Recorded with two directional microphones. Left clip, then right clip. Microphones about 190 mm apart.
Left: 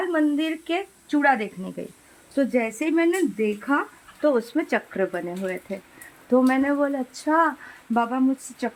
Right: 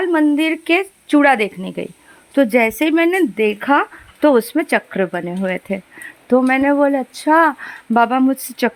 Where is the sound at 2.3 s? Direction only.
35° right (ahead or behind).